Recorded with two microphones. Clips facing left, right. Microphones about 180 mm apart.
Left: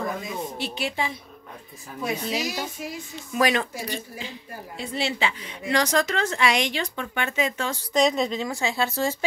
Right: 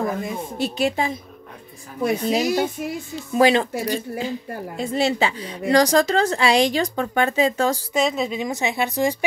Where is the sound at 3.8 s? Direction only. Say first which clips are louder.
Right 9 dB; 40° right (ahead or behind).